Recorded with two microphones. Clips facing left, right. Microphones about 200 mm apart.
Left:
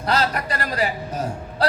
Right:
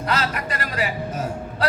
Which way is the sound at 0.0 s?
35° left (ahead or behind).